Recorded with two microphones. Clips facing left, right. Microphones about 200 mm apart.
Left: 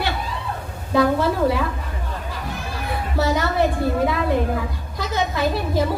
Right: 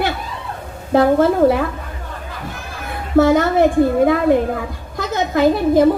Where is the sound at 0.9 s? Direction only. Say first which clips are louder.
Right 6 dB; 50° right (ahead or behind).